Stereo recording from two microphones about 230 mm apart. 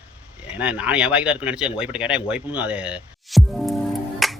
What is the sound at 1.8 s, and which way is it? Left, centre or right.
Music, centre.